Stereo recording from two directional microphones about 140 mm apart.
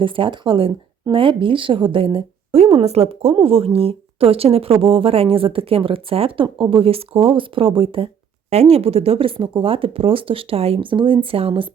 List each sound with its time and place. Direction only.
0.0 s speech: 40° right (ahead or behind)